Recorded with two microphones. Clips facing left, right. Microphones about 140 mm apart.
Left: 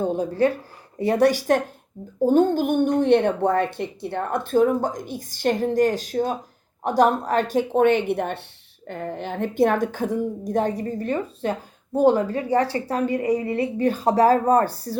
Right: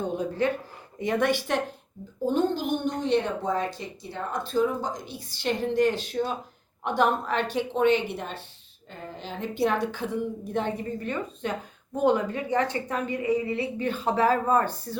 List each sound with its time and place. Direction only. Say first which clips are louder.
0.0 s a woman's voice: left 6 dB; 35° left (ahead or behind)